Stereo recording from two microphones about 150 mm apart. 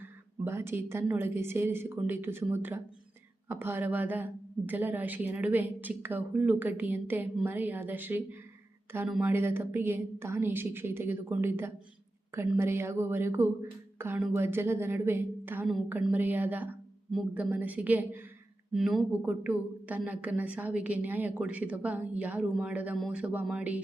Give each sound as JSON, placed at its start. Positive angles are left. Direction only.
{"t": 0.0, "sound": "a woman's voice", "side_deg": -15}